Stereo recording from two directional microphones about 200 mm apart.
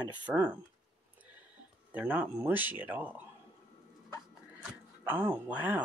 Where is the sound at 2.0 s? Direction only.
10° right (ahead or behind).